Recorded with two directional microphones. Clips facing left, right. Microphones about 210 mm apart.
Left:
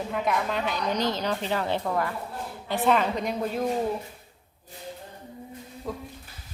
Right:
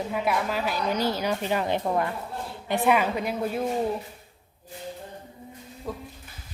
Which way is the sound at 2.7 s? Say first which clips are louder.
Right 1 dB; 10° right (ahead or behind).